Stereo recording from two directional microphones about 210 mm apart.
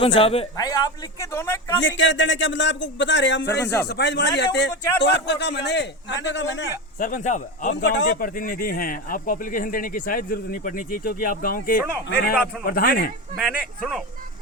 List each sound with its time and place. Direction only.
0.2 s a man's voice: 25° left (ahead or behind)
1.8 s speech: 60° left (ahead or behind)
7.0 s speech: 35° left (ahead or behind)
7.7 s speech: 55° left (ahead or behind)
13.4 s speech: 5° right (ahead or behind)